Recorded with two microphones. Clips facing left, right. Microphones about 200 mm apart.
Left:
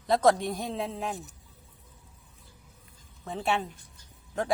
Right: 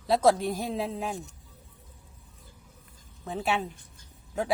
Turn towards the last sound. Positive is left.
turn(degrees=-5)  # may be behind; listen again after turning